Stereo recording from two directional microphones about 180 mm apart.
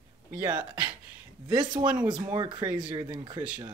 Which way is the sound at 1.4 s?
25° right (ahead or behind).